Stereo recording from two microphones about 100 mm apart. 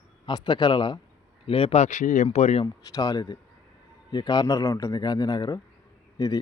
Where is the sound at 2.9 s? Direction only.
40° left (ahead or behind).